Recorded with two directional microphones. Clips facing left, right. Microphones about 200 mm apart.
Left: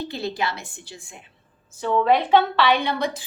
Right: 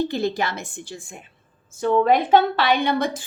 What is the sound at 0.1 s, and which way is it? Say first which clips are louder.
A woman's voice: right 4 dB; 50° right (ahead or behind).